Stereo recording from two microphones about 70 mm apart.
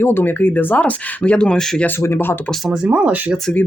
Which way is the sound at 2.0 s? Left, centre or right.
Left.